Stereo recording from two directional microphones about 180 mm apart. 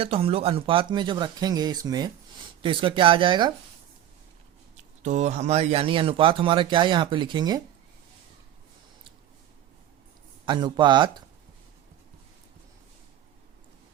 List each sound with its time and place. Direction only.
0.0 s speech: 30° right (ahead or behind)
5.0 s speech: 40° right (ahead or behind); by 7.6 s 25° right (ahead or behind)
10.4 s speech: 25° right (ahead or behind)